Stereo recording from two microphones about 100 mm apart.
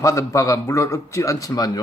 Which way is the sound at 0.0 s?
30° left (ahead or behind).